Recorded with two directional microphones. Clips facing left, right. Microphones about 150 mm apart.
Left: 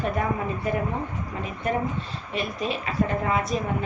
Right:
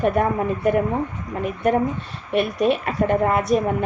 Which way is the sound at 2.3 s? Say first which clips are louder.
Right 9 dB; 60° right (ahead or behind).